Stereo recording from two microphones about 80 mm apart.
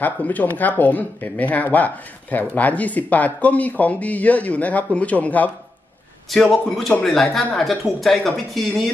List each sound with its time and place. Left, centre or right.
0.0 s speech: left
6.3 s speech: centre
7.5 s speech: centre